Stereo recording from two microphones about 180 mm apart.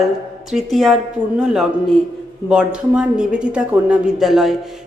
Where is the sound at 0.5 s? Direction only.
Centre (ahead or behind).